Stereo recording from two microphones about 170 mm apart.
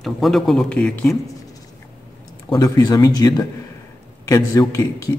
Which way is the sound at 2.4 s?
20° left (ahead or behind).